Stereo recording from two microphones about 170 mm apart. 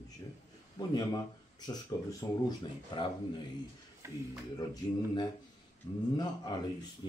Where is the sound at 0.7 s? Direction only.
25° left (ahead or behind).